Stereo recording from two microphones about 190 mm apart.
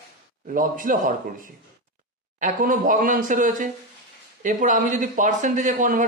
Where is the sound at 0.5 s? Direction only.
45° right (ahead or behind).